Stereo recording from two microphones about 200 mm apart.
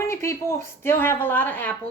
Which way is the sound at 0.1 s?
15° left (ahead or behind).